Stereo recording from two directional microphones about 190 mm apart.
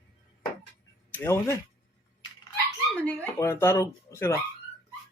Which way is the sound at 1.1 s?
15° left (ahead or behind).